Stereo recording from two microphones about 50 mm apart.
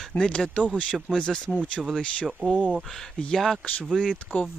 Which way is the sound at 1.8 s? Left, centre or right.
Centre.